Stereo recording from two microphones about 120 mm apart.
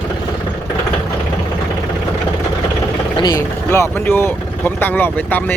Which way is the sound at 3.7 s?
20° left (ahead or behind).